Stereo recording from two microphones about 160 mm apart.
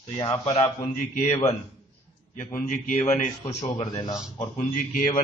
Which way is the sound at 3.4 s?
30° left (ahead or behind).